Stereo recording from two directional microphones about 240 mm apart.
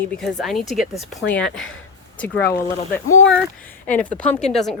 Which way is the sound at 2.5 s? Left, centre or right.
Centre.